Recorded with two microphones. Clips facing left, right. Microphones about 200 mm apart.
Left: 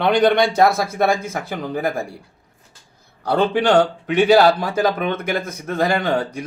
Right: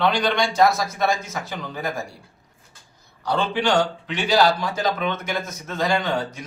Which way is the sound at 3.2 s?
55° left (ahead or behind).